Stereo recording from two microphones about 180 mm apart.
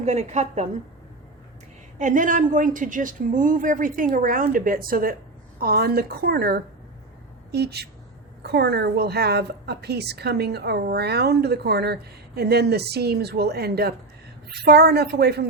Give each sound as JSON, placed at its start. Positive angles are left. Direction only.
{"t": 0.0, "sound": "a woman's voice", "side_deg": -40}
{"t": 2.0, "sound": "a woman's voice", "side_deg": -45}